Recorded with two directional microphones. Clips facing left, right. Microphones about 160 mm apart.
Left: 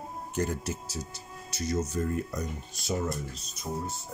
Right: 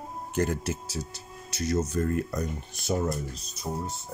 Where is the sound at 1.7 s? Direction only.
55° right (ahead or behind).